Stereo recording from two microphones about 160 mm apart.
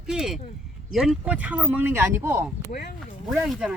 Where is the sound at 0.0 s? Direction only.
Centre (ahead or behind).